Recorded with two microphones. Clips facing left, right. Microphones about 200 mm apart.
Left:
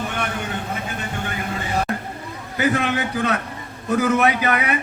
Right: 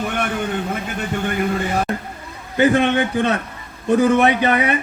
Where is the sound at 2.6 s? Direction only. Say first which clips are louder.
Right 6 dB; 30° right (ahead or behind).